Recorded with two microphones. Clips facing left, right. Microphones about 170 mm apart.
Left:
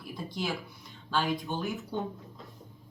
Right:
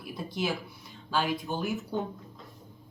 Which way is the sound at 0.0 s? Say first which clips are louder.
Right 3 dB; 5° right (ahead or behind).